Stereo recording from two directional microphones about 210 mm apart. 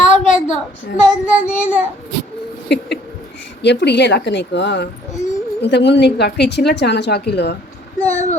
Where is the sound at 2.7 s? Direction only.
55° left (ahead or behind).